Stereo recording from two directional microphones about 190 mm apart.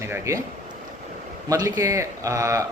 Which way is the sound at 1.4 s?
20° right (ahead or behind).